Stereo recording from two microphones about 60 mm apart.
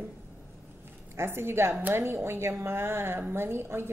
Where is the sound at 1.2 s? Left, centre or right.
Right.